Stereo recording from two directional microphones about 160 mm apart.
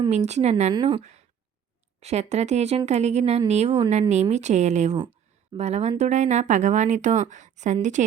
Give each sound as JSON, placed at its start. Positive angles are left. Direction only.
{"t": 0.3, "sound": "a woman's voice", "side_deg": -45}
{"t": 0.7, "sound": "speech", "side_deg": -30}
{"t": 2.0, "sound": "a woman's voice", "side_deg": -45}